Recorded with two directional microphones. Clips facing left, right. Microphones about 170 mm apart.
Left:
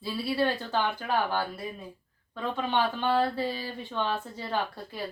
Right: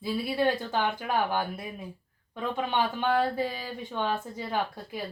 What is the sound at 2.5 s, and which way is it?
Speech, 15° right (ahead or behind).